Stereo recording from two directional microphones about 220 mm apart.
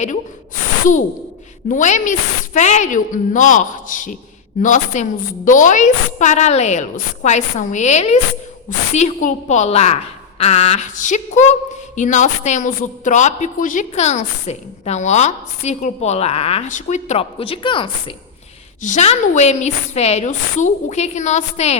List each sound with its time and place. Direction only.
1.6 s a woman's voice: 35° left (ahead or behind)
18.8 s a woman's voice: 35° left (ahead or behind)